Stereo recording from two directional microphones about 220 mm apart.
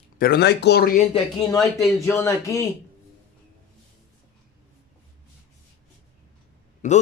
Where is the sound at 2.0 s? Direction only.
10° left (ahead or behind).